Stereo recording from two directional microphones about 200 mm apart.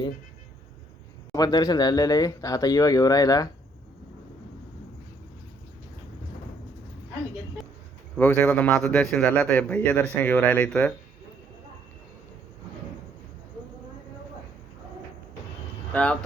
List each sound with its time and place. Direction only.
1.3 s speech: 20° left (ahead or behind)
8.1 s a man's voice: 5° left (ahead or behind)
15.9 s speech: 5° left (ahead or behind)